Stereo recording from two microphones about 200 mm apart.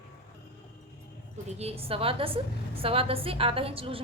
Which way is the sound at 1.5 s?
30° right (ahead or behind).